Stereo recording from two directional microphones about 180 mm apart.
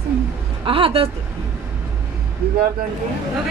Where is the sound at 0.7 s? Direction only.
30° right (ahead or behind).